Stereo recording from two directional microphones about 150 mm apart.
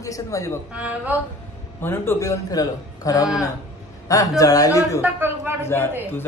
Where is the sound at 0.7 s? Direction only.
10° right (ahead or behind).